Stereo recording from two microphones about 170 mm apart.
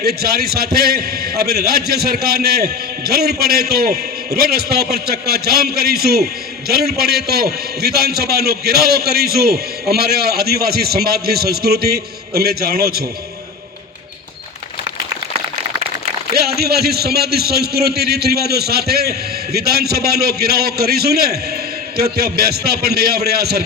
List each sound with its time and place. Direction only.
0.0 s a man's voice: 65° right (ahead or behind)
16.3 s a man's voice: 65° right (ahead or behind)